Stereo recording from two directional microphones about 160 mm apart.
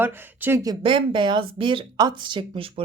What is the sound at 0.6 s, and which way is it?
Speech, 30° right (ahead or behind).